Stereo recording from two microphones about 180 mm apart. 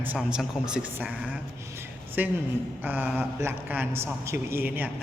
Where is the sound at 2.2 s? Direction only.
10° right (ahead or behind).